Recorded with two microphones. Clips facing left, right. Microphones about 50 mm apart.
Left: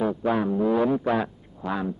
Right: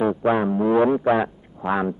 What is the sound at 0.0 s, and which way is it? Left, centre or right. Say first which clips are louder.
Speech: right 4 dB; right.